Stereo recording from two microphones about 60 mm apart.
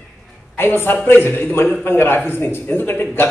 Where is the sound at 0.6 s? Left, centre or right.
Left.